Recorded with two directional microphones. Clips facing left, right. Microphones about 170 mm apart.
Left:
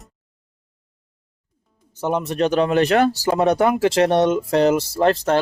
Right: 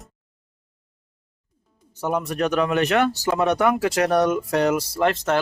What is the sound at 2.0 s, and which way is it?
Speech, 25° left (ahead or behind).